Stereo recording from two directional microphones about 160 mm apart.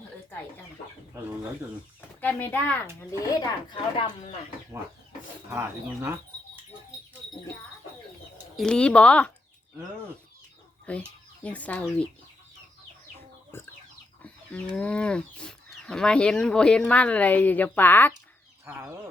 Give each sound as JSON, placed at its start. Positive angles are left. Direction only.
{"t": 2.0, "sound": "speech", "side_deg": 10}
{"t": 3.1, "sound": "a woman's voice", "side_deg": 20}
{"t": 5.5, "sound": "speech", "side_deg": -15}
{"t": 8.5, "sound": "speech", "side_deg": 5}
{"t": 10.9, "sound": "speech", "side_deg": 10}
{"t": 14.2, "sound": "speech", "side_deg": 5}
{"t": 18.6, "sound": "speech", "side_deg": -15}